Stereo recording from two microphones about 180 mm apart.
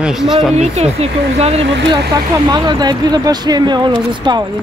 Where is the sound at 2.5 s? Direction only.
25° right (ahead or behind).